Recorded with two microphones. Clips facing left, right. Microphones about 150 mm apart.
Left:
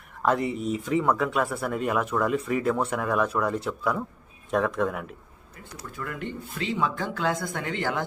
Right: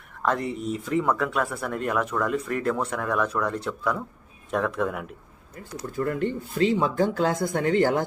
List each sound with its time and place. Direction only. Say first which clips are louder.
0.2 s speech: left 1 dB; 5° left (ahead or behind)
5.8 s speech: right 8 dB; 40° right (ahead or behind)